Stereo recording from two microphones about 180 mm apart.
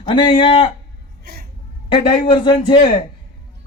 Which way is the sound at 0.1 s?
25° left (ahead or behind).